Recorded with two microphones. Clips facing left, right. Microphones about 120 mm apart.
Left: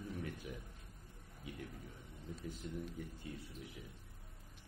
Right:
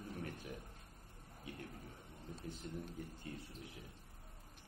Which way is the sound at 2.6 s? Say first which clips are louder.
Left 2 dB; 45° right (ahead or behind).